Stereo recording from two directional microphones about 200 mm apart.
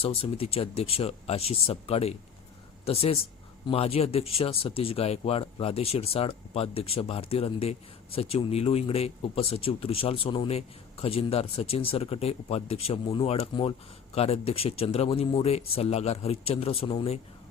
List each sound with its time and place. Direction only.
0.0 s speech: 30° left (ahead or behind)